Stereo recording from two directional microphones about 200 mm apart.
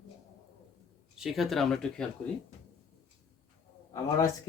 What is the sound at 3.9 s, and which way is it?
Speech, 15° left (ahead or behind).